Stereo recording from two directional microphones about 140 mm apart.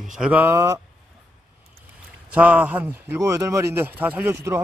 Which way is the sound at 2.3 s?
10° right (ahead or behind).